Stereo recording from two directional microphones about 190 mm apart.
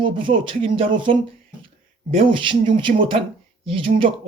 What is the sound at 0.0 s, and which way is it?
Speech, 25° right (ahead or behind).